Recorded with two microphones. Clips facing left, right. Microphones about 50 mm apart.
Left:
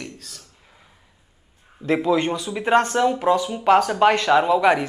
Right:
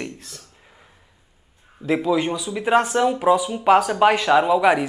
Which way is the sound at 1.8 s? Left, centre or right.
Centre.